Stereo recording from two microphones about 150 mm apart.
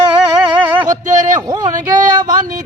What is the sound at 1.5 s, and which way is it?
Music, 30° right (ahead or behind).